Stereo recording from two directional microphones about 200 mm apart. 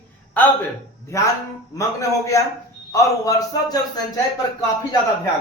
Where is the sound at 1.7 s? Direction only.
15° left (ahead or behind).